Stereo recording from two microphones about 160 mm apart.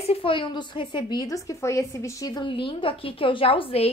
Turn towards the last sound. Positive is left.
turn(degrees=35)  # may be behind; listen again after turning